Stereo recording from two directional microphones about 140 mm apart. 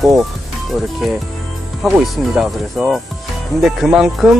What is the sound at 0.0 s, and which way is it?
Speech, centre (ahead or behind).